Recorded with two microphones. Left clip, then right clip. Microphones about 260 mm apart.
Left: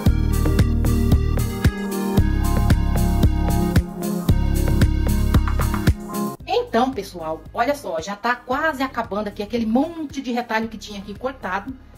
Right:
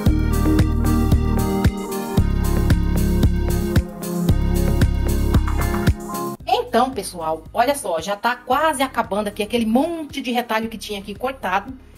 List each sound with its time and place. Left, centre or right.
0.0 s music: centre